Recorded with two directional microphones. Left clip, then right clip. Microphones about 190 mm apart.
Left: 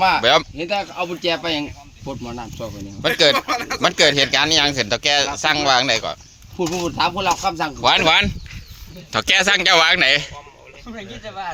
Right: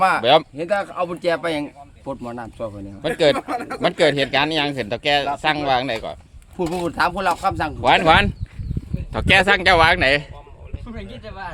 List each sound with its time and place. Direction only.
0.2 s speech: 5° left (ahead or behind)
0.5 s speech: 10° right (ahead or behind)
3.3 s speech: 45° right (ahead or behind)
3.8 s speech: centre (ahead or behind)
7.8 s speech: 20° right (ahead or behind)
9.1 s speech: 15° right (ahead or behind)